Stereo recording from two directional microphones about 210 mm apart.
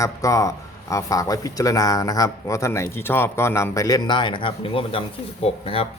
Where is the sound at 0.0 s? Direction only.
15° left (ahead or behind).